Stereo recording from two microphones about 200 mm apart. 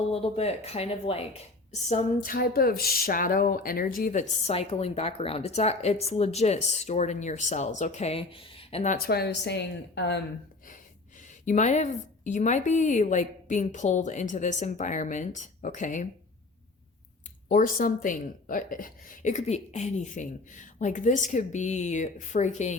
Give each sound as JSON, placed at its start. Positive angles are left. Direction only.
{"t": 0.1, "sound": "speech", "side_deg": 30}
{"t": 1.9, "sound": "speech", "side_deg": 40}
{"t": 9.0, "sound": "a woman's voice", "side_deg": 55}
{"t": 11.4, "sound": "speech", "side_deg": 35}
{"t": 17.5, "sound": "speech", "side_deg": 45}